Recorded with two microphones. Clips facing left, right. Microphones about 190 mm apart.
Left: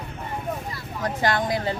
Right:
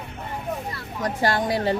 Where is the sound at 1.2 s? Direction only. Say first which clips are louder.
Right 1 dB; 30° right (ahead or behind).